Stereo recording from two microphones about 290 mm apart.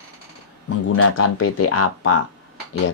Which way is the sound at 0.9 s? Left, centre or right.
Left.